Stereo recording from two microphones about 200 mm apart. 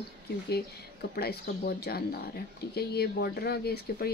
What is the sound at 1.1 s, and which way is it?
Speech, 50° left (ahead or behind).